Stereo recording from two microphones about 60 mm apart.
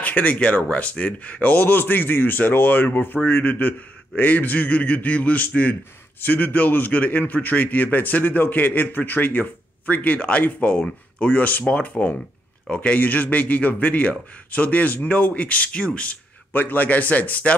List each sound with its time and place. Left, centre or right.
0.0 s a man's voice: left
11.9 s speech: left
12.6 s a man's voice: left